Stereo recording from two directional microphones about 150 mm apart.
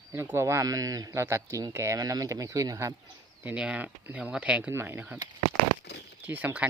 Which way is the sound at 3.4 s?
10° right (ahead or behind).